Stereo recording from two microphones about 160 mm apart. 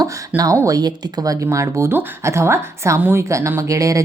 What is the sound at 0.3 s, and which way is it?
Speech, 20° right (ahead or behind).